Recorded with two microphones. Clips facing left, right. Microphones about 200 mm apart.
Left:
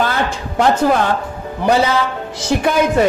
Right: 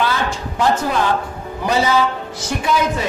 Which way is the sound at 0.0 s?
55° left (ahead or behind).